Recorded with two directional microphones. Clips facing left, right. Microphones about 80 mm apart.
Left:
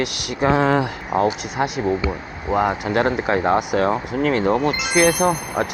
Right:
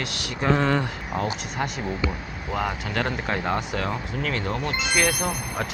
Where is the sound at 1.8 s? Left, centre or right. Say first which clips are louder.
Left 7 dB; left.